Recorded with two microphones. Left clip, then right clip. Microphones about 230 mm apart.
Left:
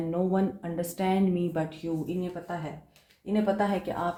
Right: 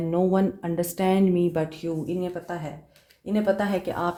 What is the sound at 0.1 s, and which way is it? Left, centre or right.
Speech, right.